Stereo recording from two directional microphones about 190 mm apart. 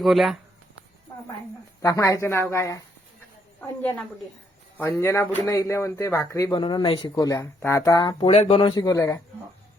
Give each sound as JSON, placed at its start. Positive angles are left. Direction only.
{"t": 0.0, "sound": "speech", "side_deg": 0}
{"t": 1.8, "sound": "speech", "side_deg": 15}